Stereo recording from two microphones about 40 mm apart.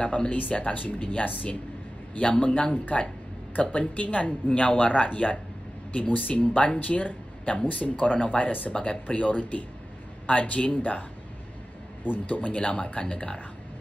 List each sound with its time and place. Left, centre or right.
0.0 s speech: left
6.5 s speech: left
6.8 s speech: left